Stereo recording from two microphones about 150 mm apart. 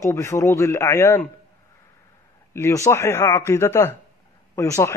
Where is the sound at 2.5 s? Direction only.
20° left (ahead or behind).